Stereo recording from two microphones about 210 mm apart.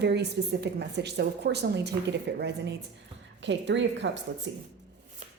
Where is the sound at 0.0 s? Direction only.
55° right (ahead or behind).